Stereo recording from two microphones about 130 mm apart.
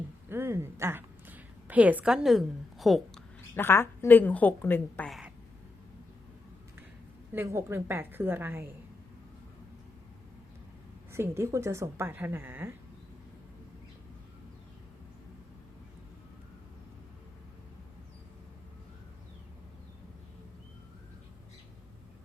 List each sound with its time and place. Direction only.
0.3 s a woman's voice: 20° right (ahead or behind); by 3.2 s centre (ahead or behind)
3.5 s a woman's voice: 15° left (ahead or behind)
5.0 s speech: centre (ahead or behind)
7.3 s a woman's voice: 20° right (ahead or behind)
11.1 s a woman's voice: 20° right (ahead or behind)